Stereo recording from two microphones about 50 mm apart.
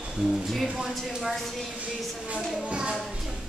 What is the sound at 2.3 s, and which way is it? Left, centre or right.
Speech, centre.